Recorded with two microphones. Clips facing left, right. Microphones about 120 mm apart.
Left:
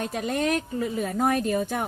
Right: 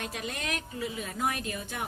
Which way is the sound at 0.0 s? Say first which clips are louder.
Left 10 dB; 40° left (ahead or behind).